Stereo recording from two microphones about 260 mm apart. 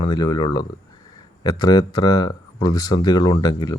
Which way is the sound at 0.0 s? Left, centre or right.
Centre.